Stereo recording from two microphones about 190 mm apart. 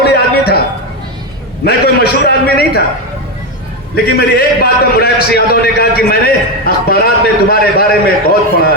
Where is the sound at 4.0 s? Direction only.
55° left (ahead or behind).